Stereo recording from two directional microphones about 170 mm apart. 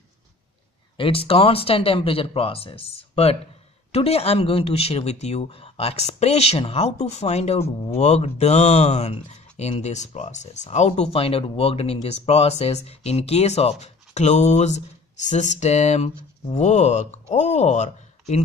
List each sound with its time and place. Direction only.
0.9 s speech: 30° left (ahead or behind)